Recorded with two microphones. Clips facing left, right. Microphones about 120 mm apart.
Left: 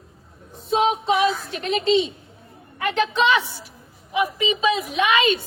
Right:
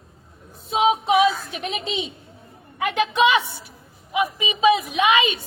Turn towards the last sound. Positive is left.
turn(degrees=-20)  # may be behind; listen again after turning